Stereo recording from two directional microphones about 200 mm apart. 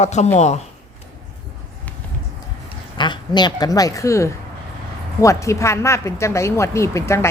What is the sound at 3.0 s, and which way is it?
Speech, 25° left (ahead or behind).